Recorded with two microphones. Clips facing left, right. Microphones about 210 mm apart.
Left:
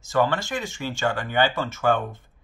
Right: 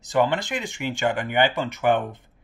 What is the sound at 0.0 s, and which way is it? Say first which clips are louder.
Speech: right 1 dB; 20° right (ahead or behind).